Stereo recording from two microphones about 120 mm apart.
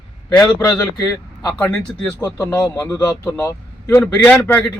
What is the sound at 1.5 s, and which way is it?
A man's voice, 15° left (ahead or behind).